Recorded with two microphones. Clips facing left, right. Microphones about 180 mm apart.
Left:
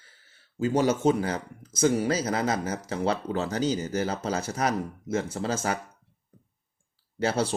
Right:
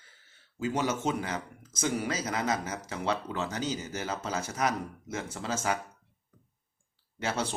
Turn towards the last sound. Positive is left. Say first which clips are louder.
# left 6 dB
turn(degrees=35)  # may be behind; listen again after turning